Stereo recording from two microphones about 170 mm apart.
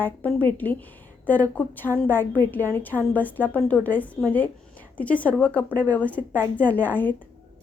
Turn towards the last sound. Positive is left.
turn(degrees=10)  # may be behind; listen again after turning